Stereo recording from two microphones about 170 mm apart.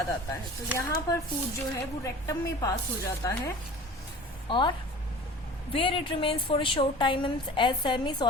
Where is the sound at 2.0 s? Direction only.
20° left (ahead or behind).